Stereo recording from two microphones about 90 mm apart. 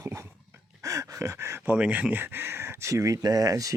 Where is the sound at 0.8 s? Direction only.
40° right (ahead or behind).